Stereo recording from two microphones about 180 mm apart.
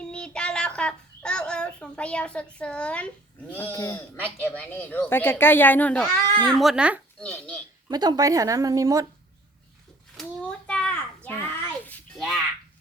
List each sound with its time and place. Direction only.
0.0 s a child's voice: 5° left (ahead or behind)
6.4 s a child's voice: centre (ahead or behind)
7.2 s speech: 5° left (ahead or behind)
7.9 s speech: 20° right (ahead or behind)
10.7 s a sound: 5° left (ahead or behind)